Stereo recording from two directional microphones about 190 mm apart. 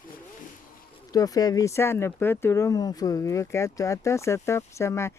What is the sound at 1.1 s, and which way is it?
Speech, 20° left (ahead or behind).